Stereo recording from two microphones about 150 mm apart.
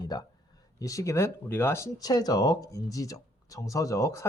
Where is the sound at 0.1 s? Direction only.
25° left (ahead or behind).